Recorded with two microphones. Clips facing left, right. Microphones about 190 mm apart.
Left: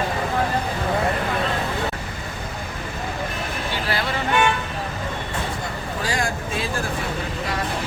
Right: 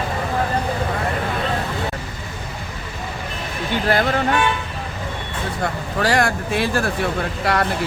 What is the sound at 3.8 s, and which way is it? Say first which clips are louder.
Speech: right 9 dB; 50° right (ahead or behind).